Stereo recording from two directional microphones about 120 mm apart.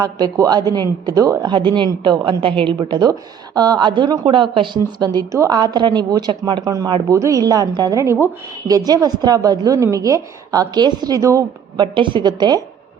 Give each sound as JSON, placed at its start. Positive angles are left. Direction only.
{"t": 0.0, "sound": "a woman's voice", "side_deg": -30}
{"t": 2.9, "sound": "a woman's voice", "side_deg": -35}
{"t": 8.6, "sound": "a woman's voice", "side_deg": -30}
{"t": 11.8, "sound": "a woman's voice", "side_deg": -40}